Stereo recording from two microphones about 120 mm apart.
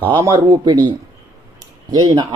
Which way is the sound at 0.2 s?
30° right (ahead or behind).